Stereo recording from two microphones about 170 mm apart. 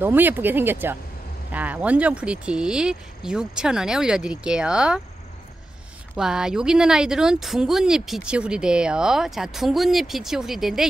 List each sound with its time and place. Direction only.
0.0 s speech: 10° right (ahead or behind)
6.1 s speech: 5° right (ahead or behind)